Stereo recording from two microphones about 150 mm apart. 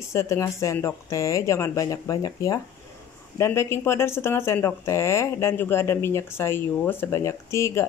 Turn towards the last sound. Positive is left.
turn(degrees=20)  # may be behind; listen again after turning